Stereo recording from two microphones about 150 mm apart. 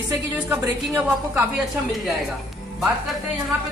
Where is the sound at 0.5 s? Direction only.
10° right (ahead or behind).